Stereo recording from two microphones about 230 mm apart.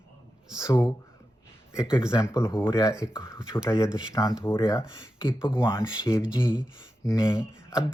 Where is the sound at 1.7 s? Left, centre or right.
Centre.